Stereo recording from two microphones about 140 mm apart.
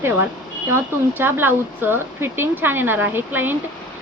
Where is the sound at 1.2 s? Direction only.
15° right (ahead or behind).